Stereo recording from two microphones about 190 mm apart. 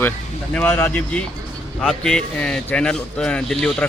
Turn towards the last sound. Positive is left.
turn(degrees=5)  # may be behind; listen again after turning